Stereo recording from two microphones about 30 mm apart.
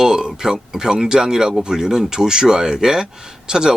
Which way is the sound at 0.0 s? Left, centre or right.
Right.